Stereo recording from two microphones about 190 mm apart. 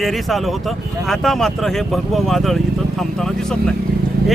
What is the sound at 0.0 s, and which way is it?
Speech, centre (ahead or behind).